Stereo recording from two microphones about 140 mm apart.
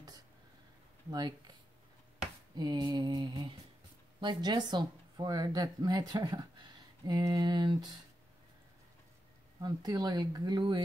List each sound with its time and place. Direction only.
1.1 s speech: 30° right (ahead or behind)
2.5 s mantra: 30° right (ahead or behind)
4.2 s speech: 30° right (ahead or behind)
9.6 s speech: 30° right (ahead or behind)